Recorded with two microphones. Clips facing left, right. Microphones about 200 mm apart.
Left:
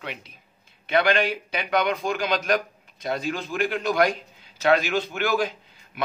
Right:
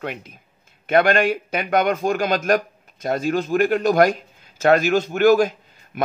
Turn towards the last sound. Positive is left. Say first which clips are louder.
# right 7 dB
turn(degrees=-45)  # may be behind; listen again after turning